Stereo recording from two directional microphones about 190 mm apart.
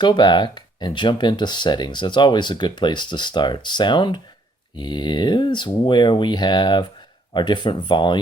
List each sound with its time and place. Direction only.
0.0 s speech: 25° left (ahead or behind)